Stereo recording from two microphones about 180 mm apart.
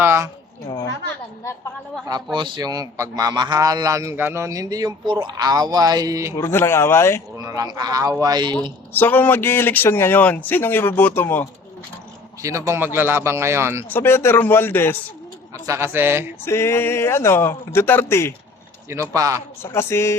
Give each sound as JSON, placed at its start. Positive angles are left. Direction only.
{"t": 0.0, "sound": "a sound", "side_deg": -10}
{"t": 2.0, "sound": "a man's voice", "side_deg": -25}
{"t": 6.4, "sound": "speech", "side_deg": 15}
{"t": 7.3, "sound": "a man's voice", "side_deg": -20}
{"t": 8.9, "sound": "speech", "side_deg": 10}
{"t": 12.4, "sound": "speech", "side_deg": -15}
{"t": 13.9, "sound": "speech", "side_deg": 15}
{"t": 15.6, "sound": "speech", "side_deg": -15}
{"t": 16.4, "sound": "speech", "side_deg": 15}
{"t": 19.1, "sound": "a man's voice", "side_deg": -20}
{"t": 19.6, "sound": "speech", "side_deg": 15}